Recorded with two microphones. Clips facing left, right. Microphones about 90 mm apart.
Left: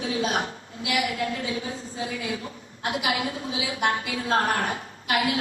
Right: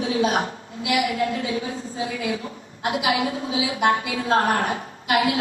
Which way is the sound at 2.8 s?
35° right (ahead or behind).